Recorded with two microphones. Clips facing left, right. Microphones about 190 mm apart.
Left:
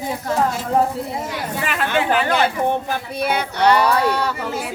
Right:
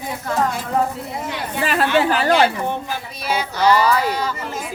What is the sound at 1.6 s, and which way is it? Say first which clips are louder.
Speech: right 4 dB; 35° right (ahead or behind).